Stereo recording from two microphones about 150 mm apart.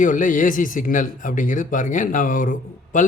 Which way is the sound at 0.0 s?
60° left (ahead or behind).